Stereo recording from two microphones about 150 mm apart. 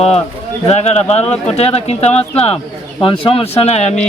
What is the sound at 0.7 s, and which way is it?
Speech, 45° left (ahead or behind).